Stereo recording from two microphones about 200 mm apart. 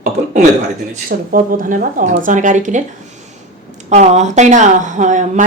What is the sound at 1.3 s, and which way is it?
Speech, 45° right (ahead or behind).